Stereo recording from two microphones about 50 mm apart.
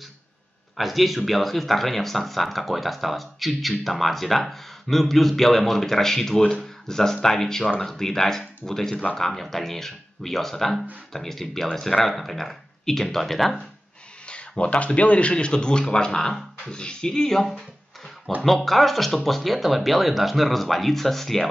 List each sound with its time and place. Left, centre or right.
0.7 s speech: centre
14.2 s speech: left; by 21.5 s centre